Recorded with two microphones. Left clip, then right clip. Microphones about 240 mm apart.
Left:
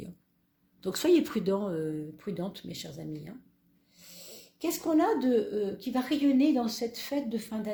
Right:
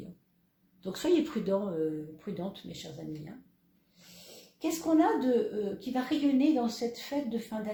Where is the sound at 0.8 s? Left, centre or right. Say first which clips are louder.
Left 3 dB; left.